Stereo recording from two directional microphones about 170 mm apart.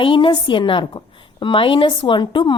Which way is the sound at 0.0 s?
30° left (ahead or behind).